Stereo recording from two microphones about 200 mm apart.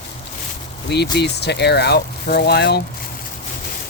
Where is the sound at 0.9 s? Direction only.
55° left (ahead or behind).